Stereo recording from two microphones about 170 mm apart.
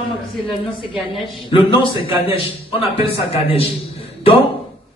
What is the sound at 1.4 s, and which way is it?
A man's voice, 30° left (ahead or behind).